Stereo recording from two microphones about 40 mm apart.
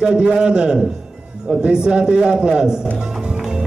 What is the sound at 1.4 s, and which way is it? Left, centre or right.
A man's voice, right.